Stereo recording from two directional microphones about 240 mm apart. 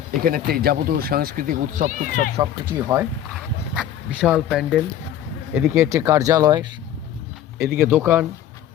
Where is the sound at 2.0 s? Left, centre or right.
Right.